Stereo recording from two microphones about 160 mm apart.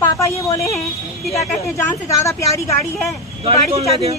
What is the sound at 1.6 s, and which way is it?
A woman's voice, 20° left (ahead or behind).